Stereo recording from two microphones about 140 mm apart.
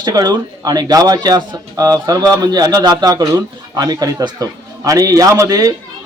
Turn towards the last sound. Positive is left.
turn(degrees=-25)  # may be behind; listen again after turning